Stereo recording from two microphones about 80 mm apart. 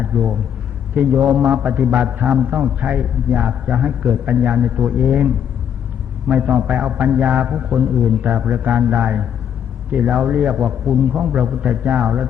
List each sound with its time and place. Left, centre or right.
1.2 s a man's voice: centre
1.5 s a man's voice: centre